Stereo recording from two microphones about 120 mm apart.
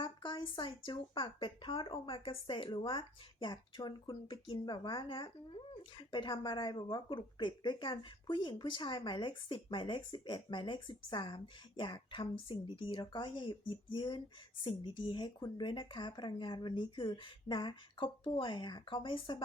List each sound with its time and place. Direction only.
0.0 s speech: 40° left (ahead or behind)